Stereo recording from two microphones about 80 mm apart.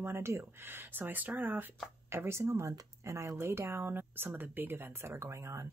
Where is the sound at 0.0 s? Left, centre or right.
Right.